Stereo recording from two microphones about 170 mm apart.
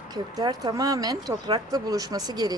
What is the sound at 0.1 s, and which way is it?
Speech, 25° right (ahead or behind).